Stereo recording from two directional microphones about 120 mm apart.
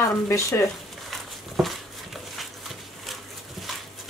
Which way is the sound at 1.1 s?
Centre (ahead or behind).